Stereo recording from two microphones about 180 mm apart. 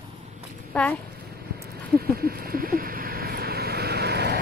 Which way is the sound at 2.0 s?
55° right (ahead or behind).